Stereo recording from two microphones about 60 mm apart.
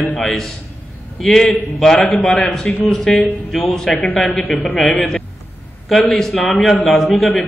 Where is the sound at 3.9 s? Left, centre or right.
Left.